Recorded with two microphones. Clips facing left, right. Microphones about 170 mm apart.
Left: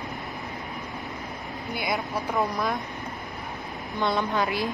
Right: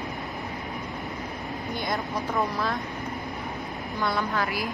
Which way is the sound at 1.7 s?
10° left (ahead or behind).